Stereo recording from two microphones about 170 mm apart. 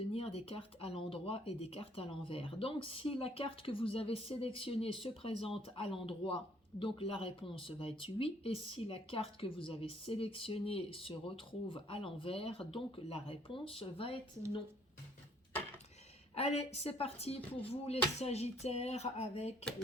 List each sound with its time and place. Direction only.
0.1 s speech: 35° left (ahead or behind)
16.3 s speech: 40° left (ahead or behind)